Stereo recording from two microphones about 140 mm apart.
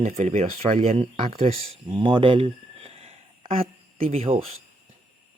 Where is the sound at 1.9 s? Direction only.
35° right (ahead or behind).